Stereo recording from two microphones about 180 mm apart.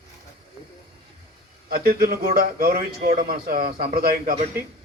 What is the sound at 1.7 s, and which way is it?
A man's voice, 60° right (ahead or behind).